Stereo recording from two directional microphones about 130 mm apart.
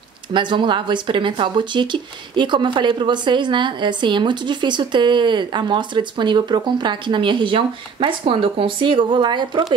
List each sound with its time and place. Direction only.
0.3 s speech: 40° right (ahead or behind)